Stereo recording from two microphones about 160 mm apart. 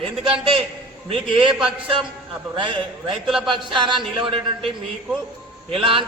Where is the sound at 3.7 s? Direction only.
30° right (ahead or behind).